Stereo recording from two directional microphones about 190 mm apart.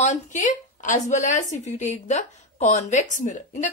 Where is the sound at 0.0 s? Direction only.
40° left (ahead or behind).